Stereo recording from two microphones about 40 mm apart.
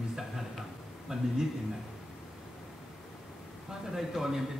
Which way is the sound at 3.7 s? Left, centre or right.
Centre.